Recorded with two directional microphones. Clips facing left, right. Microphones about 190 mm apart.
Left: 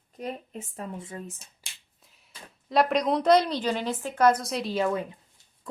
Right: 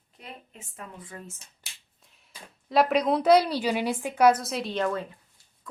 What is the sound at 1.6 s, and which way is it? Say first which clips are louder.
Finger snapping: even; 5° right (ahead or behind).